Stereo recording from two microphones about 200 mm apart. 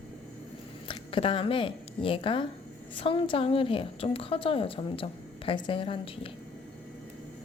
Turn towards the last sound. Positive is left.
turn(degrees=25)  # may be behind; listen again after turning